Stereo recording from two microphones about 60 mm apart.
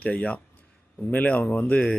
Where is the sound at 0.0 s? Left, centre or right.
Left.